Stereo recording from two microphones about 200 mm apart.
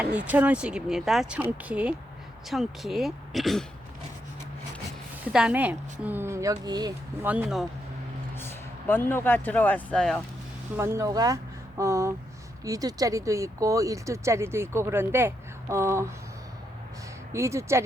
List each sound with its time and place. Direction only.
0.0 s speech: 5° right (ahead or behind)
5.3 s a woman's voice: 5° right (ahead or behind)
7.3 s speech: 5° right (ahead or behind)
8.4 s speech: 10° left (ahead or behind)
10.8 s speech: 15° right (ahead or behind)
17.3 s speech: 15° right (ahead or behind)